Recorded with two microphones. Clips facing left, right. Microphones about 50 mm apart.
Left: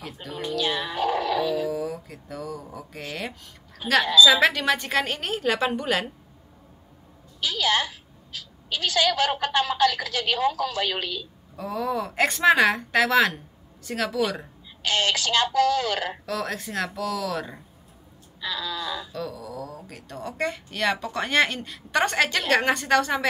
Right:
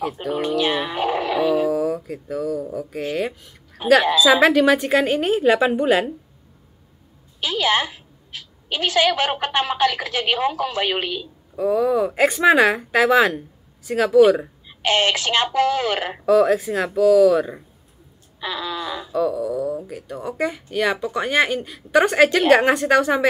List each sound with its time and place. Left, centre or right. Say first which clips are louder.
0.4 s a sound: right 5 dB; right
1.7 s mantra: right 8 dB; centre
3.0 s speech: right 9 dB; centre
4.0 s a woman's voice: even; right
4.3 s speech: right 6 dB; centre
7.3 s a sound: right 4 dB; right
11.5 s speech: right 9 dB; centre
14.8 s speech: right 5 dB; right
16.3 s speech: right 14 dB; centre
18.4 s a sound: right 4 dB; right
19.1 s speech: right 12 dB; centre